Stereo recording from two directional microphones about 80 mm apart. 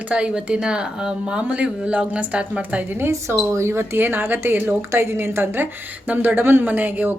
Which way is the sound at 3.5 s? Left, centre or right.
Right.